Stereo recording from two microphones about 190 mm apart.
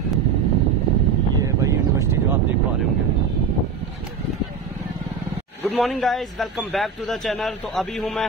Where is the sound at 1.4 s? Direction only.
15° right (ahead or behind).